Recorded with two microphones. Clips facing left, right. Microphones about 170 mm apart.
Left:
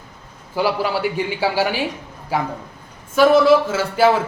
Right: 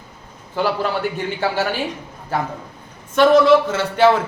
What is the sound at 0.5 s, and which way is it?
A man's voice, 10° left (ahead or behind).